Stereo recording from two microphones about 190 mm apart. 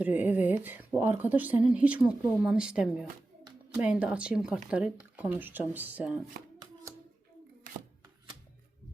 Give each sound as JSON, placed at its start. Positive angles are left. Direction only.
{"t": 0.0, "sound": "speech", "side_deg": -10}